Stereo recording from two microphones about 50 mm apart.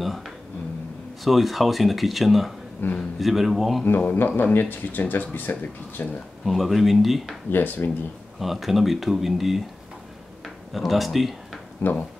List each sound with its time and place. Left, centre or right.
0.0 s speech: centre
2.8 s speech: left
3.2 s speech: centre
3.8 s speech: left
6.4 s speech: centre
7.4 s speech: left
8.4 s speech: centre
10.4 s a sound: centre